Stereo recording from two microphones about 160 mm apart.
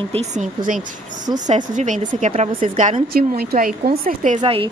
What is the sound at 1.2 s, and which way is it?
Speech, 25° right (ahead or behind).